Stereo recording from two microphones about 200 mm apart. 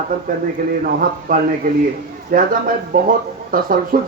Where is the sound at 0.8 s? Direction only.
45° right (ahead or behind).